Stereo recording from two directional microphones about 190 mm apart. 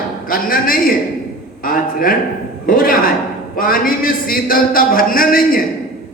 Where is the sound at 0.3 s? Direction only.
50° left (ahead or behind).